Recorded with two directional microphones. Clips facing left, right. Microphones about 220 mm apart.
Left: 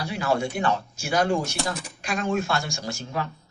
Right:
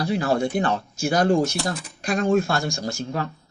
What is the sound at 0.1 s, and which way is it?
Speech, 40° right (ahead or behind).